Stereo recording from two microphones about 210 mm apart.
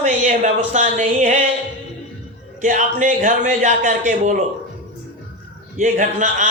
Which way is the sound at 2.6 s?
40° right (ahead or behind).